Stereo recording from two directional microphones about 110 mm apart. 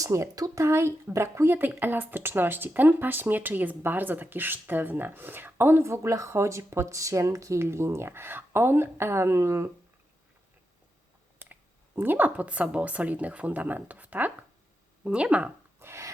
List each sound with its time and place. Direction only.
0.0 s speech: 30° right (ahead or behind)
11.9 s speech: 15° right (ahead or behind)
15.8 s filing: 25° right (ahead or behind)